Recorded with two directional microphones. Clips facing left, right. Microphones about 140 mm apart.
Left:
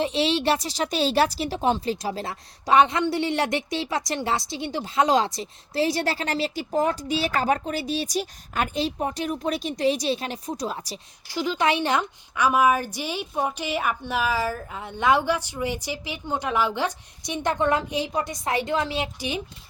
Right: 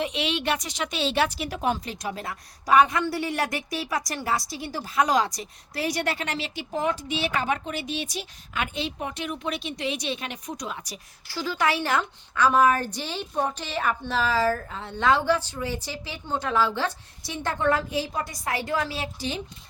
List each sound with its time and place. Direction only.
0.0 s a woman's voice: 30° left (ahead or behind)
11.3 s a woman's voice: 20° left (ahead or behind)